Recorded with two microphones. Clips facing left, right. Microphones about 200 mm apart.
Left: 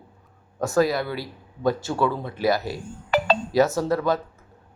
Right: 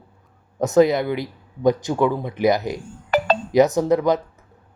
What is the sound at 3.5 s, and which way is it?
Speech, 20° right (ahead or behind).